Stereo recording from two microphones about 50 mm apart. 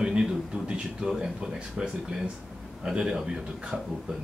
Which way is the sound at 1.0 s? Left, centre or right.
Centre.